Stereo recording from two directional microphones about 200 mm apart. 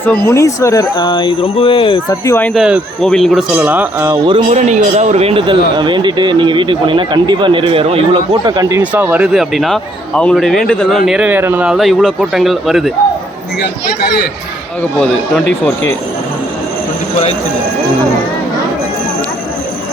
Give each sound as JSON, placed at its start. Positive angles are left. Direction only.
{"t": 0.3, "sound": "speech", "side_deg": 15}
{"t": 2.0, "sound": "speech", "side_deg": 10}
{"t": 4.3, "sound": "speech", "side_deg": -30}
{"t": 8.8, "sound": "speech", "side_deg": -10}
{"t": 14.9, "sound": "speech", "side_deg": 5}